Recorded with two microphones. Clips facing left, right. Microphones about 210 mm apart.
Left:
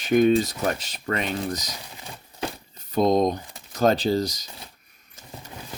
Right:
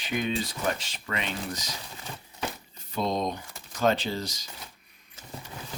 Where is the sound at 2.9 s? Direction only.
45° left (ahead or behind).